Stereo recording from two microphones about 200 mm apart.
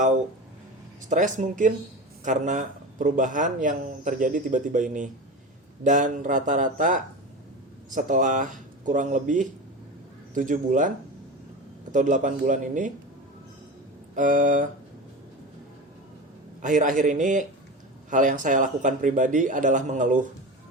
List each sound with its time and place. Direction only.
1.1 s speech: 40° right (ahead or behind)
14.2 s speech: 40° right (ahead or behind)
16.6 s speech: 40° right (ahead or behind)